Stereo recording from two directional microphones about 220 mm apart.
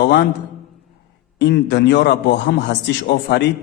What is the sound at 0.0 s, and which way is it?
Speech, 50° left (ahead or behind).